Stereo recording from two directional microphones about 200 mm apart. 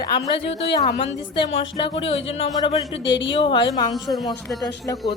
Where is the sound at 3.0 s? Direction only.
65° left (ahead or behind).